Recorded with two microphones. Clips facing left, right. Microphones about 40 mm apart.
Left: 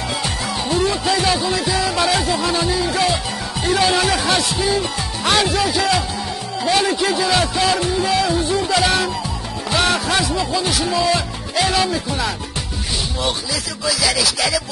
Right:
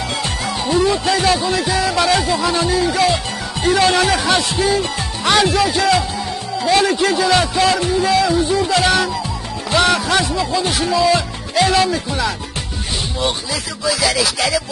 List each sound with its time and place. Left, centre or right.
0.2 s music: centre
3.6 s speech: centre
4.1 s speech: centre
4.4 s speech: centre
6.7 s speech: centre
9.7 s music: centre
10.3 s speech: centre
13.8 s speech: centre